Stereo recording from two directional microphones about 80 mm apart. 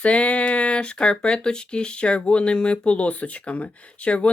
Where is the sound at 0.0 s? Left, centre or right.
Centre.